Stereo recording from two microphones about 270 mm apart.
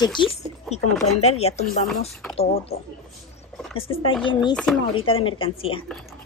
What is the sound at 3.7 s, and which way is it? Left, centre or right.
A woman's voice, left.